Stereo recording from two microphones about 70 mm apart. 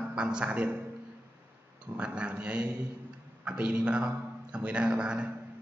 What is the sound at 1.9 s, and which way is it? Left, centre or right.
A man's voice, centre.